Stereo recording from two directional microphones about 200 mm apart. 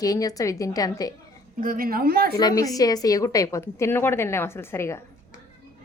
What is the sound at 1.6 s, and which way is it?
Speech, 45° right (ahead or behind).